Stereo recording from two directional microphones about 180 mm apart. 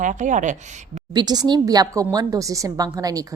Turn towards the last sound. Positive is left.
turn(degrees=-20)  # may be behind; listen again after turning